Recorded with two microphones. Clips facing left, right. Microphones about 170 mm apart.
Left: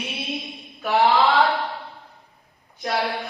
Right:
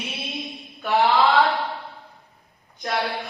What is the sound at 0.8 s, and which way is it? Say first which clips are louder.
Mantra: left 1 dB; centre (ahead or behind).